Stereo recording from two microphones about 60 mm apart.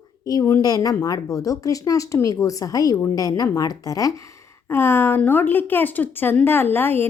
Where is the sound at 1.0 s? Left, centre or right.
Left.